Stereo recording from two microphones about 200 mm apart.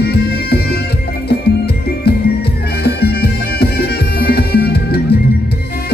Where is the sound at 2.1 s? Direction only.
50° left (ahead or behind).